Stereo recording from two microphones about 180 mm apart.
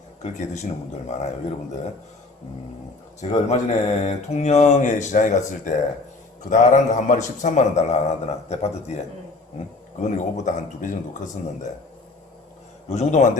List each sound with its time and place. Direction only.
0.2 s speech: 40° left (ahead or behind)
3.2 s speech: 40° left (ahead or behind)
10.0 s speech: 40° left (ahead or behind)
12.9 s speech: 40° left (ahead or behind)